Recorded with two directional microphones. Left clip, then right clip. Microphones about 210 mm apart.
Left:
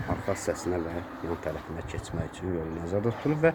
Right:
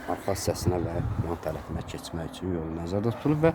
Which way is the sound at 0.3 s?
35° right (ahead or behind).